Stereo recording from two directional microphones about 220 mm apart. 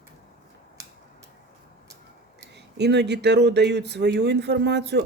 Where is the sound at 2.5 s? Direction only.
50° right (ahead or behind).